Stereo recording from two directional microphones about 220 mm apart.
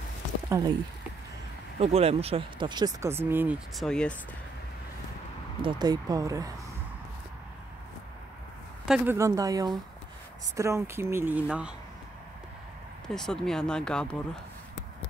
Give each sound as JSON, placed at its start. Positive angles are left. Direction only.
{"t": 0.5, "sound": "speech", "side_deg": -15}
{"t": 1.8, "sound": "speech", "side_deg": -30}
{"t": 5.6, "sound": "speech", "side_deg": -20}
{"t": 8.8, "sound": "speech", "side_deg": -5}
{"t": 13.0, "sound": "speech", "side_deg": 5}